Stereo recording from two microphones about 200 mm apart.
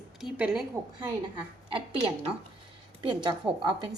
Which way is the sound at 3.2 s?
25° right (ahead or behind).